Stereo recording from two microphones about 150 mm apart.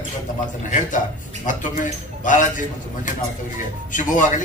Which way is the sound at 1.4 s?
55° left (ahead or behind).